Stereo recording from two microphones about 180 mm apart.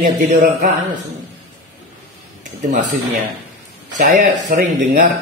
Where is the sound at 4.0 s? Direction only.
50° right (ahead or behind).